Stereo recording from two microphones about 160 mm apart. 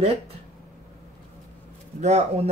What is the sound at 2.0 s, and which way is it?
Speech, 45° right (ahead or behind).